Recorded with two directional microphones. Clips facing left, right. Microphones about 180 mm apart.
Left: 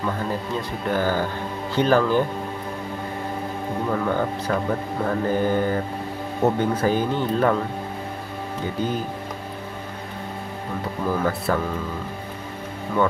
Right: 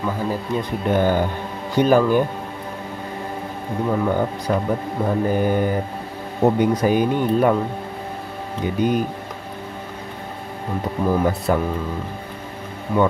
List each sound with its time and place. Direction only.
0.0 s a man's voice: 10° right (ahead or behind)
3.9 s a man's voice: 10° right (ahead or behind)
8.8 s a man's voice: 15° right (ahead or behind)
11.1 s a man's voice: 15° right (ahead or behind)
12.9 s a man's voice: 15° right (ahead or behind)